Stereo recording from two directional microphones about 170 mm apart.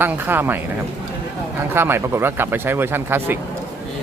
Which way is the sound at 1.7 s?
15° right (ahead or behind).